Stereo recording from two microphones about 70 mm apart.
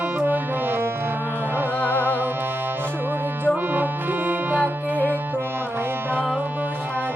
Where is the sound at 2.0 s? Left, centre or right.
Right.